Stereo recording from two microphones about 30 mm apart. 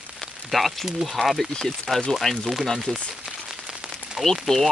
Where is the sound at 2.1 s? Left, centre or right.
Centre.